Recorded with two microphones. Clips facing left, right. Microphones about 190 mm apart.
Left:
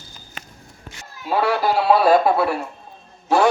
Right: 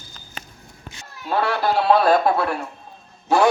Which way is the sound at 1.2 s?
10° left (ahead or behind).